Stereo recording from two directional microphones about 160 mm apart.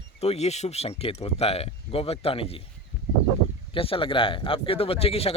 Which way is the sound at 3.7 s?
35° left (ahead or behind).